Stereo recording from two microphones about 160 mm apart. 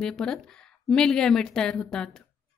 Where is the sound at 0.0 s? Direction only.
5° left (ahead or behind).